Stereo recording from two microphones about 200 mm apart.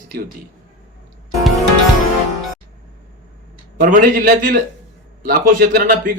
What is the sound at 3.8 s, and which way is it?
A man's voice, 45° right (ahead or behind).